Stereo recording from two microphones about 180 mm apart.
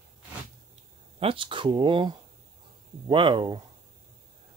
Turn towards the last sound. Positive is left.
turn(degrees=-25)  # may be behind; listen again after turning